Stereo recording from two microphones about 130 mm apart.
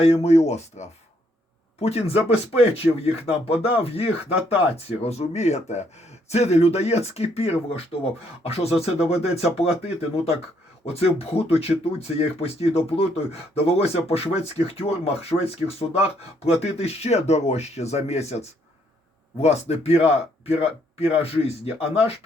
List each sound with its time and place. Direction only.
0.0 s speech: 50° left (ahead or behind)